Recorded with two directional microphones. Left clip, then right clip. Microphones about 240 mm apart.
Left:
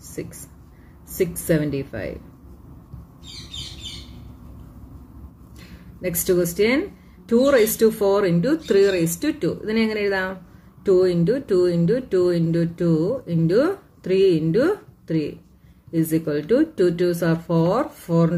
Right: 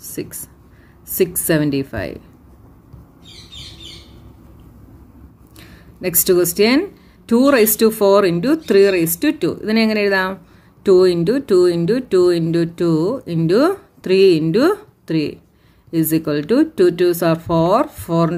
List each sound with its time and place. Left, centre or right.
0.1 s speech: right
5.9 s speech: right